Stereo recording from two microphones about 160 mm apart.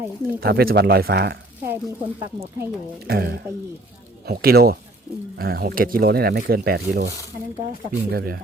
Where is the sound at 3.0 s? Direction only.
80° right.